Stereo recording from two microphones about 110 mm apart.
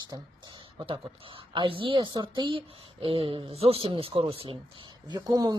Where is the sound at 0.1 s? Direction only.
45° right (ahead or behind).